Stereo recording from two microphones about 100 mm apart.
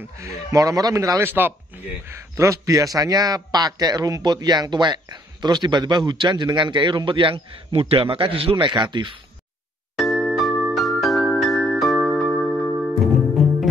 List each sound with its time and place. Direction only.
0.0 s speech: 30° right (ahead or behind)
1.2 s a man's voice: 20° right (ahead or behind); by 9.1 s 50° right (ahead or behind)
9.9 s music: centre (ahead or behind)